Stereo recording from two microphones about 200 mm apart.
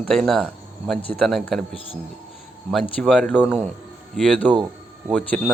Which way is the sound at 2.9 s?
Centre (ahead or behind).